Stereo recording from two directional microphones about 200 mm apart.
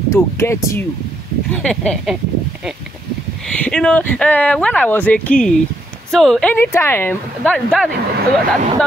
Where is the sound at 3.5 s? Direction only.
5° left (ahead or behind).